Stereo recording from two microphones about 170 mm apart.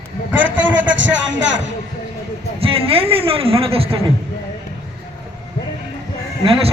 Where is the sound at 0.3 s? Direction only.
90° right.